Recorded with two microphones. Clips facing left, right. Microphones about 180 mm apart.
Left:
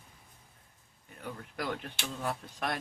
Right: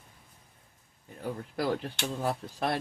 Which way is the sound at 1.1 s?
30° right (ahead or behind).